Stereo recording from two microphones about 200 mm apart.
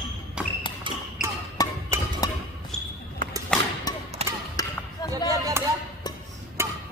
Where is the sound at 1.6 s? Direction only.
20° left (ahead or behind).